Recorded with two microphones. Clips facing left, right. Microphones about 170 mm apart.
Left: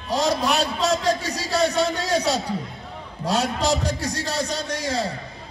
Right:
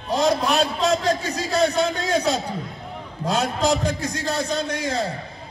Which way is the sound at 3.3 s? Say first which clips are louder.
Right 1 dB; 55° right (ahead or behind).